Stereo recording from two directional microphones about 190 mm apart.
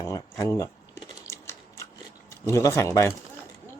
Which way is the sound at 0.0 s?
15° left (ahead or behind).